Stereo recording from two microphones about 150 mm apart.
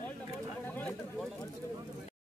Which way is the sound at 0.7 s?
10° left (ahead or behind).